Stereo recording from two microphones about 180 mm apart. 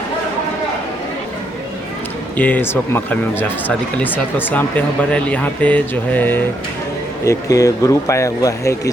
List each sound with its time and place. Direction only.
2.4 s speech: 10° left (ahead or behind)